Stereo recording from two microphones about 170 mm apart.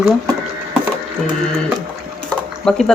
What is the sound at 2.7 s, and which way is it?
Speech, 5° left (ahead or behind).